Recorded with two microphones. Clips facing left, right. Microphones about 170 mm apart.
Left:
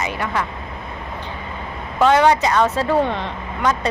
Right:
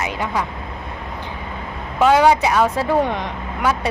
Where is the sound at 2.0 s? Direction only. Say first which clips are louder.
Right 1 dB; 10° right (ahead or behind).